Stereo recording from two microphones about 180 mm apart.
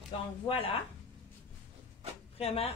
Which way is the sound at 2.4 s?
35° left (ahead or behind).